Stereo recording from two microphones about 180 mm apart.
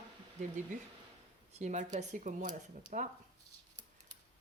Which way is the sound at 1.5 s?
40° right (ahead or behind).